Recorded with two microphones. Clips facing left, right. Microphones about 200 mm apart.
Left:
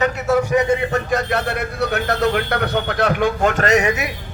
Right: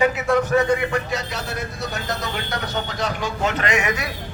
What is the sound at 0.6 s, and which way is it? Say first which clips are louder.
Speech: left 2 dB; 25° left (ahead or behind).